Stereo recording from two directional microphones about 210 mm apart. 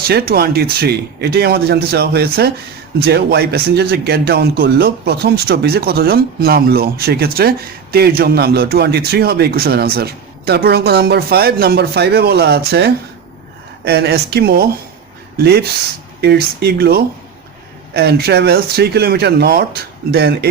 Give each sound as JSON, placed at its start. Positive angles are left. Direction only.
{"t": 0.1, "sound": "speech", "side_deg": -45}